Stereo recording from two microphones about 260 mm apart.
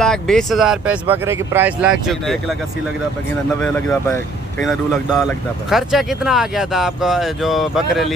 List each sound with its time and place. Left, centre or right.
0.0 s speech: centre
3.6 s speech: centre